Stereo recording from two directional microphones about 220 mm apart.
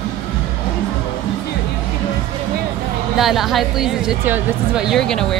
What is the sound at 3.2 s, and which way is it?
A woman's voice, centre (ahead or behind).